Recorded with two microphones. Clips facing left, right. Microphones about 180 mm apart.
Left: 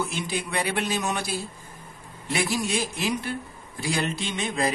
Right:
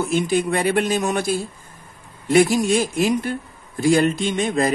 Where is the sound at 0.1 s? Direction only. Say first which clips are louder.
Right 10 dB; 50° right (ahead or behind).